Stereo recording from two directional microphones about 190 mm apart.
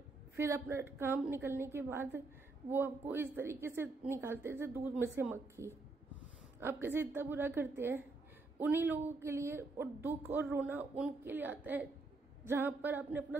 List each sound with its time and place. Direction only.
0.4 s a woman's voice: 15° right (ahead or behind)